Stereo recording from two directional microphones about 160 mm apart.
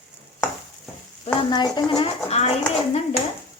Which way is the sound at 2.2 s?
40° left (ahead or behind).